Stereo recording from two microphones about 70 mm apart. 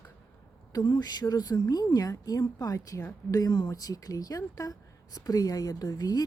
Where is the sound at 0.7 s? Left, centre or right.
Left.